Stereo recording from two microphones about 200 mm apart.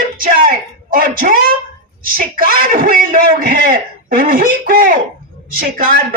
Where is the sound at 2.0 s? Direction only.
45° right (ahead or behind).